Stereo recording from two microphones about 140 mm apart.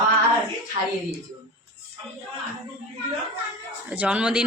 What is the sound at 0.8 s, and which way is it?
Speech, 60° right (ahead or behind).